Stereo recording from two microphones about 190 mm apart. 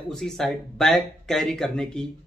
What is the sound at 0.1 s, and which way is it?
Speech, centre (ahead or behind).